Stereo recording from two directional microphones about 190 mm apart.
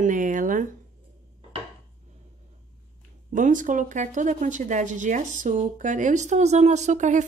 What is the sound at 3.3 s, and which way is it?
A woman's voice, 45° right (ahead or behind).